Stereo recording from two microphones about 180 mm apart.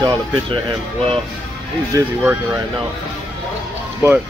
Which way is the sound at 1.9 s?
20° right (ahead or behind).